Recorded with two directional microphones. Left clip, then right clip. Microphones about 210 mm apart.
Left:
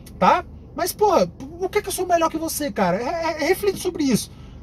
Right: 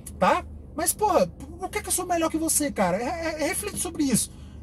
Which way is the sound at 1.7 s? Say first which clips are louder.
Left 7 dB; 10° left (ahead or behind).